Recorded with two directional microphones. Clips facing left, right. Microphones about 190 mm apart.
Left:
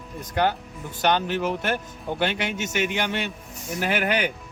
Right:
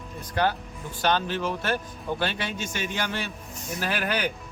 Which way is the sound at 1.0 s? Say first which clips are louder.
Left 3 dB; 15° left (ahead or behind).